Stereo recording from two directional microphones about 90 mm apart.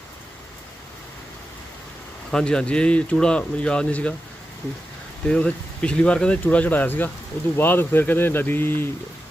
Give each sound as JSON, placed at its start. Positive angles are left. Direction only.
{"t": 2.3, "sound": "speech", "side_deg": 10}
{"t": 5.2, "sound": "speech", "side_deg": 10}